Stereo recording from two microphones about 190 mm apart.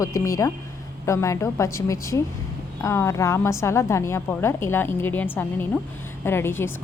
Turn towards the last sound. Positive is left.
turn(degrees=10)  # may be behind; listen again after turning